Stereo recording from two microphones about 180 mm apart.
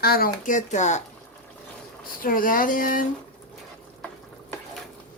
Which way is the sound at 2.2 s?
50° left (ahead or behind).